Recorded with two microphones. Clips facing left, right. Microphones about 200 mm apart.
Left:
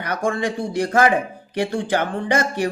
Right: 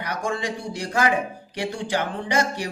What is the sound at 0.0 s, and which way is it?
A man's voice, 50° left (ahead or behind).